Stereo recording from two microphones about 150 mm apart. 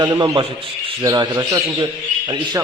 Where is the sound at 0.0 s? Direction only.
25° right (ahead or behind).